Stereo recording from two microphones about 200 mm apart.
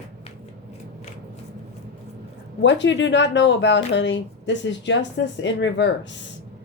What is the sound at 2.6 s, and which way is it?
Speech, 65° left (ahead or behind).